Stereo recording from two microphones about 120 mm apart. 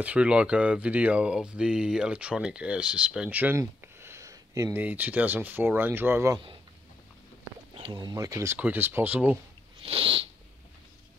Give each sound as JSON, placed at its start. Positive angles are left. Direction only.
{"t": 0.0, "sound": "speech", "side_deg": -10}
{"t": 3.5, "sound": "a sound", "side_deg": -20}
{"t": 4.7, "sound": "speech", "side_deg": -15}
{"t": 7.9, "sound": "speech", "side_deg": -30}
{"t": 8.5, "sound": "speech", "side_deg": -15}
{"t": 9.8, "sound": "a sound", "side_deg": -50}